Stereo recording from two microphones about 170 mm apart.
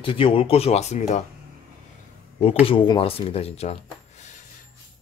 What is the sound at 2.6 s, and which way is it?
Speech, 30° left (ahead or behind).